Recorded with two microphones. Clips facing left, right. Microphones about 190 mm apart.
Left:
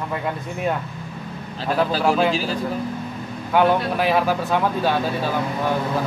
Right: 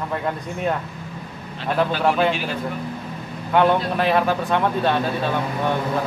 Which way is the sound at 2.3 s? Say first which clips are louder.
Left 2 dB; 35° left (ahead or behind).